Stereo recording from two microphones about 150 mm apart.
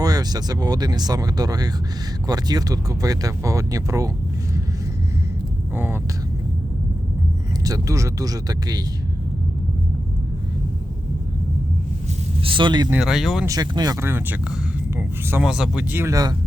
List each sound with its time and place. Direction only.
0.0 s speech: 25° right (ahead or behind)
5.7 s vehicle: 15° right (ahead or behind)
7.6 s speech: 20° right (ahead or behind)
12.4 s speech: 35° right (ahead or behind)
12.9 s speech: 5° right (ahead or behind)
13.4 s speech: 25° right (ahead or behind)